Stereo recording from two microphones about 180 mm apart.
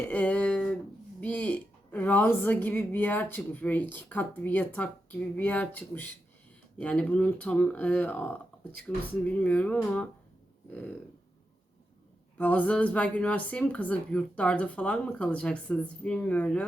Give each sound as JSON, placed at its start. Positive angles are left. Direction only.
{"t": 0.1, "sound": "a woman's voice", "side_deg": 5}
{"t": 12.4, "sound": "a woman's voice", "side_deg": 10}